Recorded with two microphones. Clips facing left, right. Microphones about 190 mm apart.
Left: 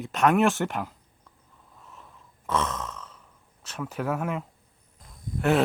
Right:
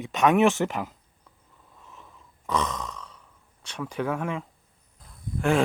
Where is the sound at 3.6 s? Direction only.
5° left (ahead or behind).